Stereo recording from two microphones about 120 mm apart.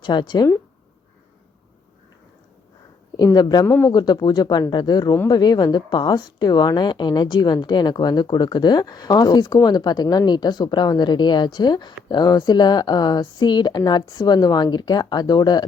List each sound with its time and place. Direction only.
0.0 s a woman's voice: 40° left (ahead or behind)
3.3 s a woman's voice: 30° left (ahead or behind)
3.7 s speech: 20° left (ahead or behind)
3.9 s a woman's voice: 35° left (ahead or behind)